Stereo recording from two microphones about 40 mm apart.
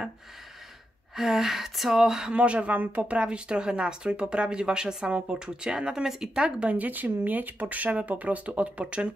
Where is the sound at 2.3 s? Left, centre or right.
Right.